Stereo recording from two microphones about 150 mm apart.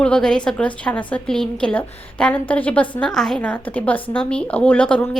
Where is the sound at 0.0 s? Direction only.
5° left (ahead or behind).